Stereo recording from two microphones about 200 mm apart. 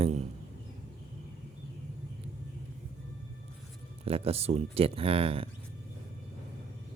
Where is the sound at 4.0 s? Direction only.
30° right (ahead or behind).